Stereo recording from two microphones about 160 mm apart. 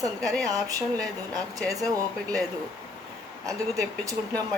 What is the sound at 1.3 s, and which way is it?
Speech, 20° right (ahead or behind).